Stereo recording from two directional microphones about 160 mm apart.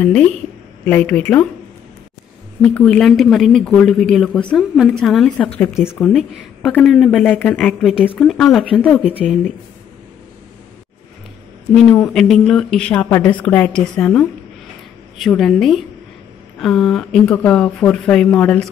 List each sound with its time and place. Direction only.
0.0 s a woman's voice: 10° left (ahead or behind)
2.6 s a woman's voice: 10° left (ahead or behind)
11.7 s a woman's voice: 5° left (ahead or behind)